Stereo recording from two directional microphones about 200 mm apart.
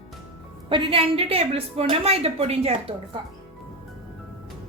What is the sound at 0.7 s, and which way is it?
A woman's voice, 25° right (ahead or behind).